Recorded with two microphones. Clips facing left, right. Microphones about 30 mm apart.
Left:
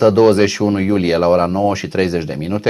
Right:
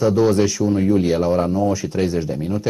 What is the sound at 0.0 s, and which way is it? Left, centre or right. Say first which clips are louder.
Speech: left 5 dB; left.